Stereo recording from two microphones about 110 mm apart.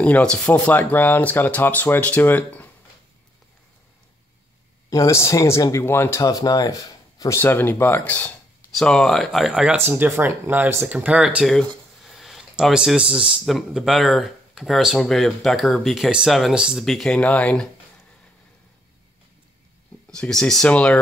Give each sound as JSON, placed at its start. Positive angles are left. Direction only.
{"t": 0.0, "sound": "speech", "side_deg": 10}
{"t": 4.8, "sound": "speech", "side_deg": 30}
{"t": 6.2, "sound": "speech", "side_deg": 35}
{"t": 7.3, "sound": "speech", "side_deg": 20}
{"t": 8.7, "sound": "speech", "side_deg": 5}
{"t": 11.4, "sound": "a sound", "side_deg": 0}
{"t": 13.5, "sound": "speech", "side_deg": 0}
{"t": 16.8, "sound": "speech", "side_deg": 5}
{"t": 20.1, "sound": "speech", "side_deg": 5}